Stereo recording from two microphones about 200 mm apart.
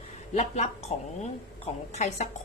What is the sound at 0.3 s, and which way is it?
A woman's voice, 35° left (ahead or behind).